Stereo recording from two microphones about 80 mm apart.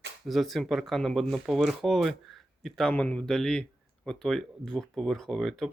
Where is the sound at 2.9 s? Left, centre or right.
Centre.